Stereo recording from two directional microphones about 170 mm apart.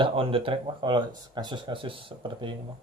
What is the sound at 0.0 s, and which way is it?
Speech, 35° right (ahead or behind).